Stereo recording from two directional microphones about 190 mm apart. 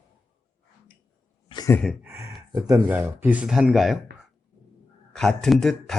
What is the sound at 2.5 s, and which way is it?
Speech, 20° right (ahead or behind).